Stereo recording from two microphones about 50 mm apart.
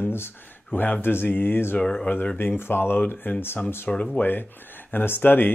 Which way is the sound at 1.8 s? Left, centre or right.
Centre.